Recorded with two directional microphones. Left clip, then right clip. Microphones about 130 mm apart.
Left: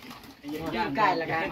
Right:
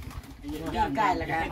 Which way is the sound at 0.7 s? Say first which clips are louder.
Even; 45° right (ahead or behind).